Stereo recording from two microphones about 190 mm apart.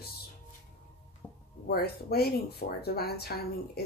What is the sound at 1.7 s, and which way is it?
A woman's voice, 55° left (ahead or behind).